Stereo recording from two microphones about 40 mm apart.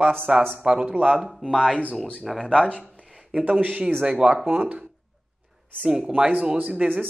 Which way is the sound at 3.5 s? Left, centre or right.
Right.